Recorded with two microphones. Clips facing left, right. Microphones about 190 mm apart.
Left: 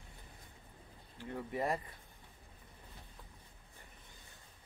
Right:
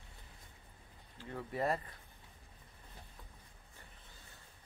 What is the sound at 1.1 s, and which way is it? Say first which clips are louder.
Speech: left 1 dB; 15° left (ahead or behind).